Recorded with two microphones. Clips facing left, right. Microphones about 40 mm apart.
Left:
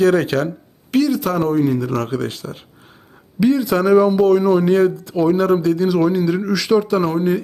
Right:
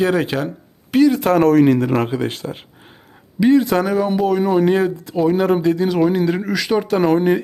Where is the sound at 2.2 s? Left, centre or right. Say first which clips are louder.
Right 2 dB; right.